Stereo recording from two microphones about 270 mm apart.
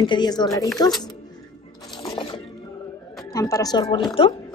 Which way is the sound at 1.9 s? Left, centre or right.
Centre.